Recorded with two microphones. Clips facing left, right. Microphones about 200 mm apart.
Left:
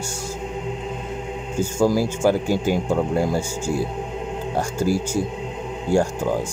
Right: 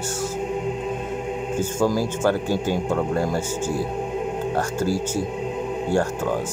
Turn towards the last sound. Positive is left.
turn(degrees=10)  # may be behind; listen again after turning